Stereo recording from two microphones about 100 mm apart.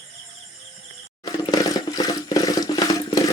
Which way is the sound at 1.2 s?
40° left (ahead or behind).